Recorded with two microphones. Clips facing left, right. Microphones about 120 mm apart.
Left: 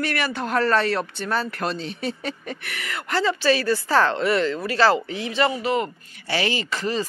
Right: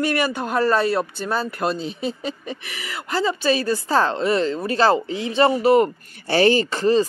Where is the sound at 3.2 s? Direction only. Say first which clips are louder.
Even; 20° right (ahead or behind).